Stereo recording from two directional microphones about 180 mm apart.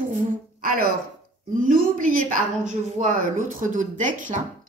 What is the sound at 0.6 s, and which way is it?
Speech, 55° right (ahead or behind).